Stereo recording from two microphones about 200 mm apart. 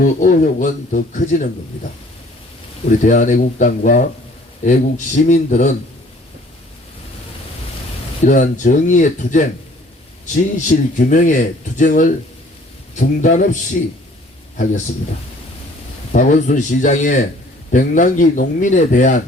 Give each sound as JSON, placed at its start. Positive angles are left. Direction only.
{"t": 0.0, "sound": "speech", "side_deg": 40}
{"t": 3.0, "sound": "speech", "side_deg": 40}
{"t": 8.2, "sound": "a man's voice", "side_deg": 40}
{"t": 16.1, "sound": "speech", "side_deg": 40}